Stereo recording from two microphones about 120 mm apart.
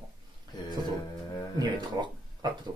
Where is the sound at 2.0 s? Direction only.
35° right (ahead or behind).